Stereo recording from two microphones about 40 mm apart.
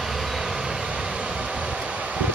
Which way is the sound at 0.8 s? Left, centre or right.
Right.